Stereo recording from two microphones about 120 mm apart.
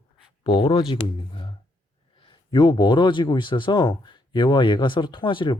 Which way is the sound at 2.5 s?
40° left (ahead or behind).